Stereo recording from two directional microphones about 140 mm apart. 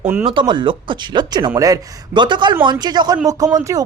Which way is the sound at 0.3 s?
35° right (ahead or behind).